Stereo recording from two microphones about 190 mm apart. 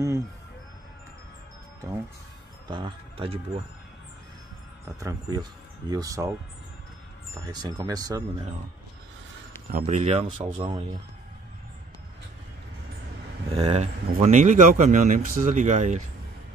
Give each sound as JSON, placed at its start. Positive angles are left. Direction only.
{"t": 2.7, "sound": "speech", "side_deg": -25}
{"t": 4.8, "sound": "speech", "side_deg": -20}
{"t": 7.3, "sound": "speech", "side_deg": -20}
{"t": 9.7, "sound": "speech", "side_deg": -40}
{"t": 13.5, "sound": "speech", "side_deg": -30}